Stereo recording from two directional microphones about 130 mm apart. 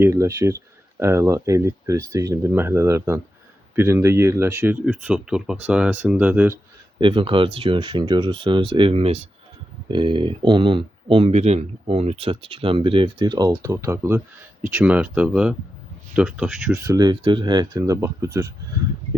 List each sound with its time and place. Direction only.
0.0 s speech: 20° right (ahead or behind)
7.0 s speech: 40° right (ahead or behind); by 14.2 s 20° right (ahead or behind)
14.7 s speech: 10° right (ahead or behind)
16.8 s speech: 30° right (ahead or behind)